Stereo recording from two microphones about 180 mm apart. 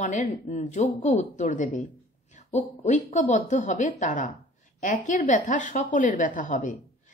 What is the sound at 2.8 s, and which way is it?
Speech, 40° left (ahead or behind).